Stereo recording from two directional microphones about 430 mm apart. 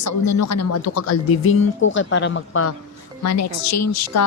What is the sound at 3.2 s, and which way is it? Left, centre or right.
Speech, left.